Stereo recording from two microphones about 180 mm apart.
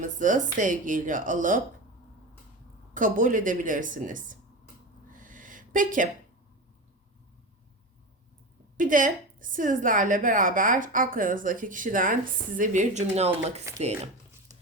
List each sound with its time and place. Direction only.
0.0 s a woman's voice: 45° right (ahead or behind)
2.9 s a woman's voice: 45° right (ahead or behind)
5.1 s a sound: 50° right (ahead or behind)
8.8 s a woman's voice: 50° right (ahead or behind)